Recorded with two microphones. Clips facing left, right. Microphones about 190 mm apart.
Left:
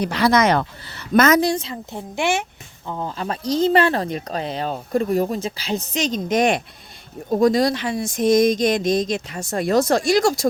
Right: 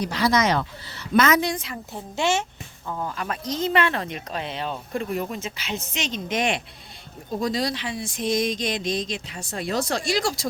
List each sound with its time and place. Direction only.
0.0 s speech: 60° left (ahead or behind); by 10.5 s 45° left (ahead or behind)